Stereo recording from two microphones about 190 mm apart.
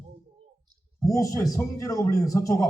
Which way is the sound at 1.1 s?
15° left (ahead or behind).